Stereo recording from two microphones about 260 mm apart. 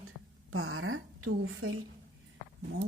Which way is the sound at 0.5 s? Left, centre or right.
Right.